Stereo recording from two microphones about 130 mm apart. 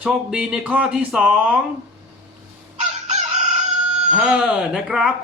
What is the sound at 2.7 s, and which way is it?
Chicken, 60° right (ahead or behind).